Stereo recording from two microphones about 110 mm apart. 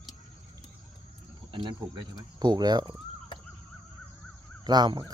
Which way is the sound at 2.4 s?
40° right (ahead or behind).